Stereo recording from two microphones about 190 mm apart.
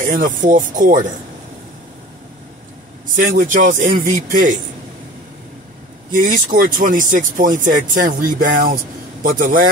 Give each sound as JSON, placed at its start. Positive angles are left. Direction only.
{"t": 0.0, "sound": "speech", "side_deg": -45}
{"t": 3.2, "sound": "speech", "side_deg": -45}
{"t": 6.1, "sound": "speech", "side_deg": -45}